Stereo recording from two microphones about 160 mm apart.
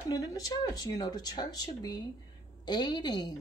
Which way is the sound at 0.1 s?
20° left (ahead or behind).